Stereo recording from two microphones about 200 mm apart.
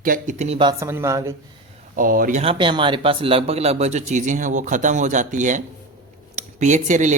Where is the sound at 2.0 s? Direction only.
45° right (ahead or behind).